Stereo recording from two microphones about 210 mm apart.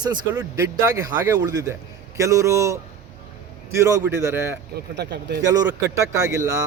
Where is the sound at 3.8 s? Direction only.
15° right (ahead or behind).